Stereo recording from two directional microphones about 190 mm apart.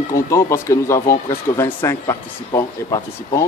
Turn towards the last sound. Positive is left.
turn(degrees=15)  # may be behind; listen again after turning